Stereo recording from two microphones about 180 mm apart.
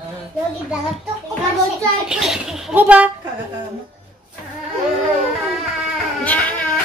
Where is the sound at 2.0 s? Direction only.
5° right (ahead or behind).